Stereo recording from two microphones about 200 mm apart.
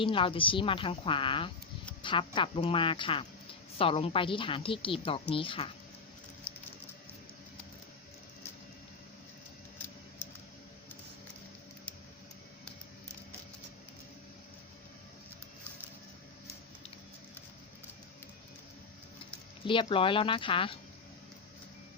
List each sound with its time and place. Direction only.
0.0 s a woman's voice: 25° left (ahead or behind)
19.6 s a woman's voice: 25° left (ahead or behind)